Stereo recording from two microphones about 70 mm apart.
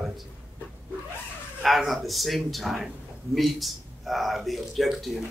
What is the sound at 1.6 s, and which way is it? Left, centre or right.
A man's voice, centre.